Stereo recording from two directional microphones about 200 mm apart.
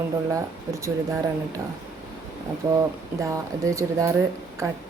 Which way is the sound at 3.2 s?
15° right (ahead or behind).